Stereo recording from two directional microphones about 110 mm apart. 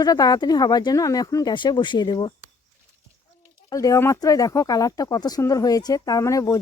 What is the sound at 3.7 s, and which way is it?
Speech, 30° left (ahead or behind).